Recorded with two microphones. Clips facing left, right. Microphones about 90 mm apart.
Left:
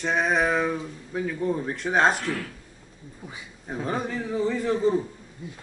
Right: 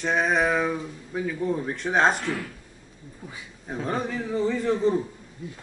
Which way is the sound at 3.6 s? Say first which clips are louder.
Even; centre (ahead or behind).